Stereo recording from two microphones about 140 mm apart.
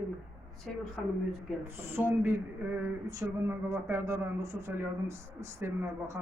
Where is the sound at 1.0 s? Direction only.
Centre (ahead or behind).